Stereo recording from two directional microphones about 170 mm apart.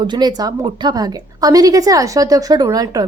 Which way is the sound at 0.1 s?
25° right (ahead or behind).